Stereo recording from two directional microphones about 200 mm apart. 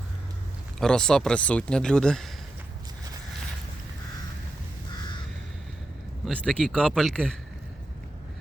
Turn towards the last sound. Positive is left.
turn(degrees=0)  # may be behind; listen again after turning